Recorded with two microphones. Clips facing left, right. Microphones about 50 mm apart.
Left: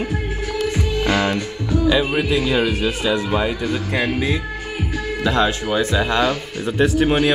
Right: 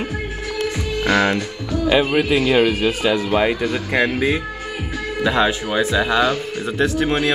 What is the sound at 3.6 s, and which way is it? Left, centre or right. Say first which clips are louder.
Speech: right 2 dB; right.